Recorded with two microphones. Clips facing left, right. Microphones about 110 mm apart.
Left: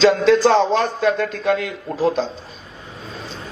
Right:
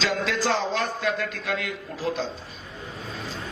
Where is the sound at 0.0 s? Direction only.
30° left (ahead or behind).